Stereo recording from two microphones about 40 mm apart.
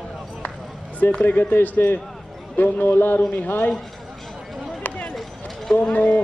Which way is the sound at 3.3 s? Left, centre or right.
Left.